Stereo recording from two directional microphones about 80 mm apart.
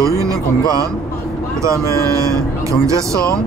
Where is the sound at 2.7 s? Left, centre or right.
Right.